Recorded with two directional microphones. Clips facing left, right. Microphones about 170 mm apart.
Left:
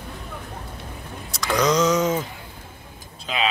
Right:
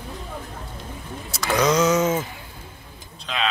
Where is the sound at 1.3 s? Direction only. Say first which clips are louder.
Even; 5° right (ahead or behind).